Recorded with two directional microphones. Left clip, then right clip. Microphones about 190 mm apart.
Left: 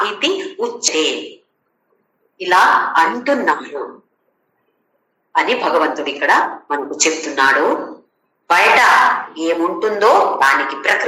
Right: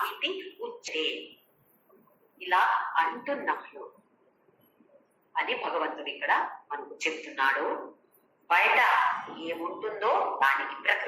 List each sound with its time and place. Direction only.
0.0 s a sound: 60° left (ahead or behind)
2.4 s speech: 60° left (ahead or behind)
5.3 s speech: 60° left (ahead or behind)